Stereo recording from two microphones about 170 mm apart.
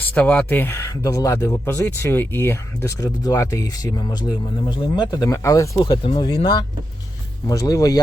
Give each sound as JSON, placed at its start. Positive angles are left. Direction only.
{"t": 0.0, "sound": "speech", "side_deg": 10}